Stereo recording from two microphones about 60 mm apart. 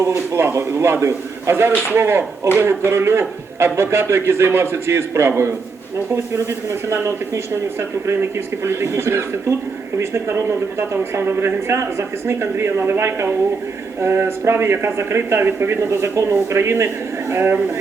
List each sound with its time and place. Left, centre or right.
0.3 s a man's voice: right